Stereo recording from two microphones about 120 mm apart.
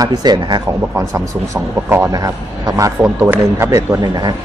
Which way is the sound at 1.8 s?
20° right (ahead or behind).